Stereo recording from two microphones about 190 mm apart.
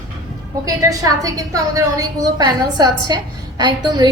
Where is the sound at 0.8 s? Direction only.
20° right (ahead or behind).